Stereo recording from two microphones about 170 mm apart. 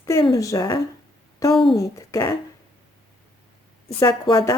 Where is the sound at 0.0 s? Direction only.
20° left (ahead or behind).